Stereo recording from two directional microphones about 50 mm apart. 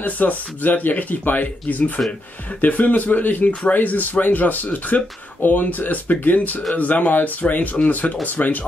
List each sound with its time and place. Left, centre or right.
0.0 s speech: left